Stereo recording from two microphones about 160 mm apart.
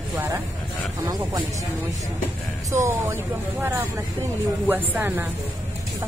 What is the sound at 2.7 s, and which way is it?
Speech, 20° right (ahead or behind).